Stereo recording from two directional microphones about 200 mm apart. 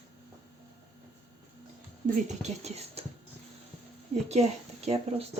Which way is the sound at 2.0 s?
35° right (ahead or behind).